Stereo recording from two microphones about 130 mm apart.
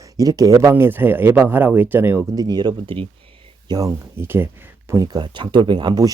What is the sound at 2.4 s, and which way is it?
Speech, 30° right (ahead or behind).